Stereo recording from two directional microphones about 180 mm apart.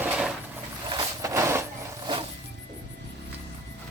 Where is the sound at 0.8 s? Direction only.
20° right (ahead or behind).